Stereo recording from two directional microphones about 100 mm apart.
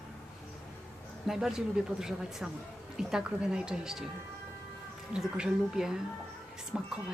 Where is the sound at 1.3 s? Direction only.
5° right (ahead or behind).